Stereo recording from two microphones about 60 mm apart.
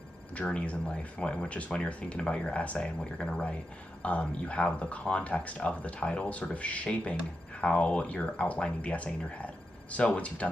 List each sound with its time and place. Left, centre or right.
0.4 s speech: centre